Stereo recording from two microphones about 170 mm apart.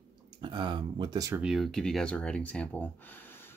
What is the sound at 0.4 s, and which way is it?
Speech, 30° right (ahead or behind).